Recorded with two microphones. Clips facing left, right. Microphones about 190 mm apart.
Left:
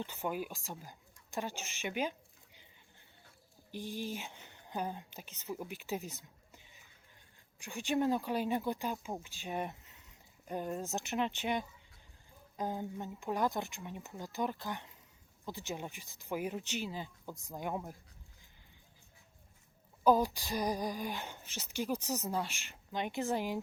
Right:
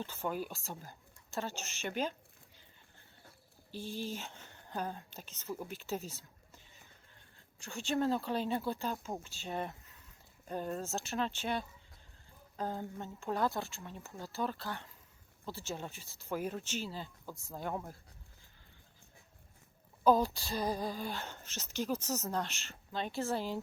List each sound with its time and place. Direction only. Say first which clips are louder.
0.0 s speech: even; 15° left (ahead or behind)
3.7 s speech: even; 15° left (ahead or behind)
20.1 s speech: even; 10° left (ahead or behind)